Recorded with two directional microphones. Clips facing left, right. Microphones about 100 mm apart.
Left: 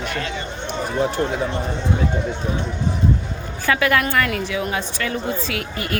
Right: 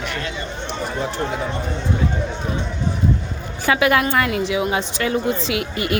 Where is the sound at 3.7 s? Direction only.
20° right (ahead or behind).